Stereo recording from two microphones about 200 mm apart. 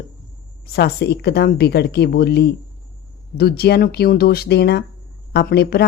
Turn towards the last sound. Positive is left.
turn(degrees=55)  # may be behind; listen again after turning